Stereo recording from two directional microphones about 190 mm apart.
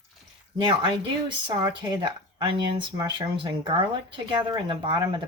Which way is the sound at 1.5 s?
25° right (ahead or behind).